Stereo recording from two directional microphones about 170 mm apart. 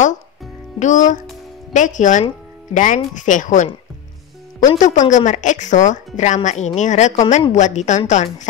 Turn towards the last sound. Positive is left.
turn(degrees=45)  # may be behind; listen again after turning